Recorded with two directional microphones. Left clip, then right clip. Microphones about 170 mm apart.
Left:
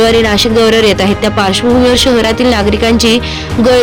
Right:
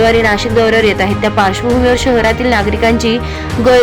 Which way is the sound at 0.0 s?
25° left (ahead or behind).